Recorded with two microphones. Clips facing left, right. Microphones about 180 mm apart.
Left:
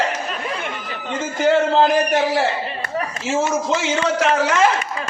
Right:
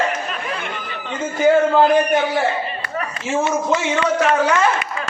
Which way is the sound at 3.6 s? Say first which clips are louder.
Right 1 dB; 90° left.